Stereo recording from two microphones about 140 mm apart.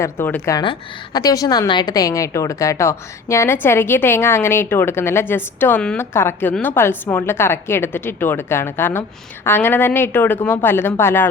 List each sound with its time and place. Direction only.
0.0 s a woman's voice: 15° left (ahead or behind)
0.5 s a woman's voice: 30° left (ahead or behind); by 11.3 s 15° left (ahead or behind)